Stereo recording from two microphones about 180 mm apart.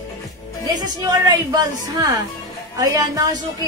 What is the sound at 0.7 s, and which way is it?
A woman's voice, 20° right (ahead or behind).